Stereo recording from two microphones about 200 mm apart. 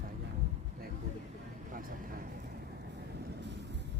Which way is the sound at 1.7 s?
45° right (ahead or behind).